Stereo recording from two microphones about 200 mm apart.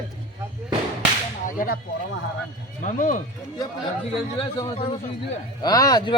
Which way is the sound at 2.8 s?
40° left (ahead or behind).